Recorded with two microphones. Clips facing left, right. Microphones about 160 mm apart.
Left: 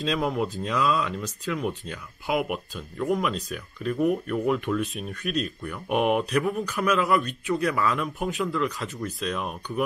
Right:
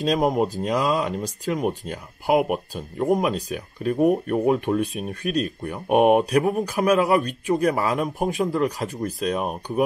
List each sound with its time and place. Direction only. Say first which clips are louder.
0.0 s speech: right 5 dB; 40° right (ahead or behind)